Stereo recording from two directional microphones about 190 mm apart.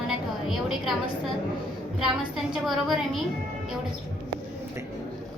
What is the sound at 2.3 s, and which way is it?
Speech, centre (ahead or behind).